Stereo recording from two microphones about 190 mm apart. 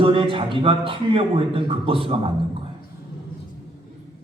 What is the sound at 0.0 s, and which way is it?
A man's voice, 30° right (ahead or behind).